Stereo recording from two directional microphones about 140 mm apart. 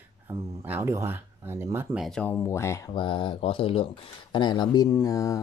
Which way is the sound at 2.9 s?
35° left (ahead or behind).